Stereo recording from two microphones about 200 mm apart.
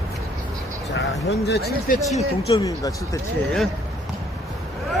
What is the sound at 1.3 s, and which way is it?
Speech, 55° left (ahead or behind).